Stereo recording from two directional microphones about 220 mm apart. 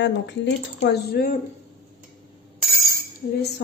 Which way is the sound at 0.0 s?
55° left (ahead or behind).